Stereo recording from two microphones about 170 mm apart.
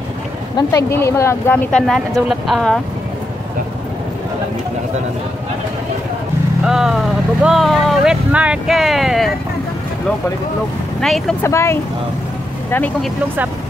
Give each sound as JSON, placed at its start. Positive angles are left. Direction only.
{"t": 0.7, "sound": "speech", "side_deg": 15}
{"t": 1.7, "sound": "speech", "side_deg": 5}
{"t": 6.6, "sound": "speech", "side_deg": -5}
{"t": 11.0, "sound": "speech", "side_deg": 0}
{"t": 11.4, "sound": "speech", "side_deg": 15}